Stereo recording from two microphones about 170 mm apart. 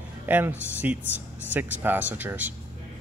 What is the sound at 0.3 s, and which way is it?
Speech, 10° right (ahead or behind).